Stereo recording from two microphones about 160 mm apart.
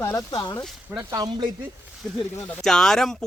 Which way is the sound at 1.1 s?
25° right (ahead or behind).